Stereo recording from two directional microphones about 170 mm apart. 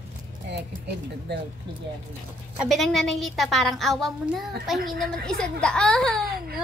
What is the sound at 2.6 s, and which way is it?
A woman's voice, centre (ahead or behind).